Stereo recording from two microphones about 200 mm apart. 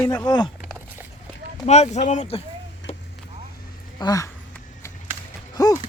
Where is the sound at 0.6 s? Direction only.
5° right (ahead or behind).